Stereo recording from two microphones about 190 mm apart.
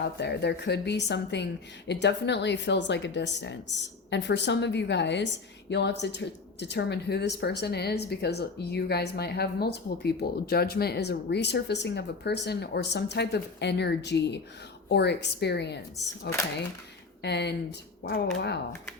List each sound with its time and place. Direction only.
0.0 s speech: 60° left (ahead or behind)